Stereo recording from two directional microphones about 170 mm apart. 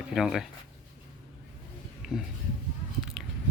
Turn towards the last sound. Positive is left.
turn(degrees=-5)  # may be behind; listen again after turning